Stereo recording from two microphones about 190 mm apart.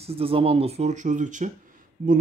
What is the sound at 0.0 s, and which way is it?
Speech, 30° right (ahead or behind).